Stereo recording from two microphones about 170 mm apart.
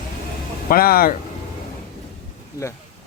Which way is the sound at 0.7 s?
60° left (ahead or behind).